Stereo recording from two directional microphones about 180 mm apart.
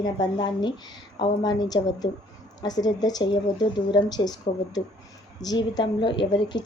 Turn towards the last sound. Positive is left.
turn(degrees=25)  # may be behind; listen again after turning